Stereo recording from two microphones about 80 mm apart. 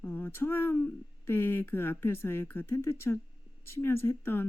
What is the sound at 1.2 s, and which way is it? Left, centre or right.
Speech, left.